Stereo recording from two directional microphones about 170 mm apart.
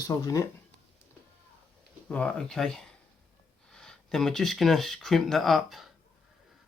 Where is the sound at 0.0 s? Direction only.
20° left (ahead or behind).